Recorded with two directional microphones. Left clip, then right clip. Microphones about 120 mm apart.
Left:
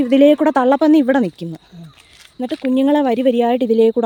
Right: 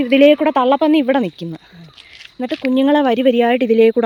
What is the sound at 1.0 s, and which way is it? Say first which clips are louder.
Speech: even; 40° left (ahead or behind).